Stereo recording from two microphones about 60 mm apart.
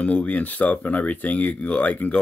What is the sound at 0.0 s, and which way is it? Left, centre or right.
Speech, left.